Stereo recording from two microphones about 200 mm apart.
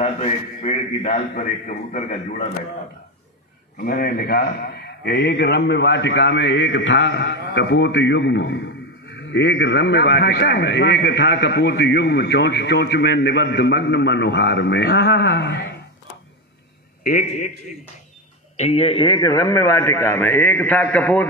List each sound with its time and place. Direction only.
0.0 s a man's voice: 35° left (ahead or behind)
3.7 s a man's voice: 45° left (ahead or behind)
17.0 s a man's voice: 40° left (ahead or behind)
18.6 s a man's voice: 30° left (ahead or behind); by 21.3 s 5° left (ahead or behind)